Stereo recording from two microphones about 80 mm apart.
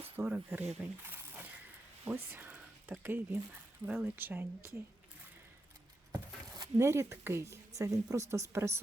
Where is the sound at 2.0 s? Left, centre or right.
Right.